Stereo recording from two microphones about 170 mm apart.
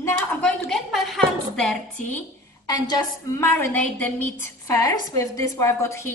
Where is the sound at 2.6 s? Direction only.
25° left (ahead or behind).